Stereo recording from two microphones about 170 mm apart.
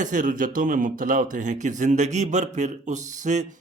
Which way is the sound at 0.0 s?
50° right (ahead or behind).